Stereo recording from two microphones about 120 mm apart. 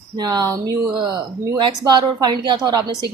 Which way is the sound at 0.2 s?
35° right (ahead or behind).